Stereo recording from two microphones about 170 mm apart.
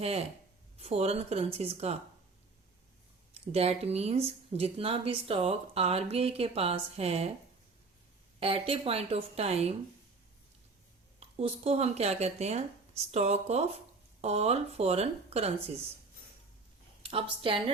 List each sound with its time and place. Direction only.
0.0 s speech: 35° right (ahead or behind)
3.3 s speech: 35° right (ahead or behind)
8.4 s speech: 35° right (ahead or behind)
11.2 s speech: 35° right (ahead or behind)
17.1 s speech: 30° right (ahead or behind)